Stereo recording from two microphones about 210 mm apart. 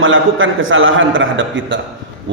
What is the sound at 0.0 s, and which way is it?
A man's voice, 65° right (ahead or behind).